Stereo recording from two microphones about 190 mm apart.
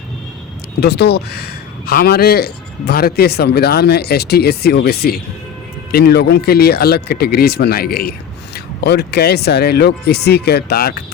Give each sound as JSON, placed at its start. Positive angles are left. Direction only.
{"t": 0.8, "sound": "speech", "side_deg": 60}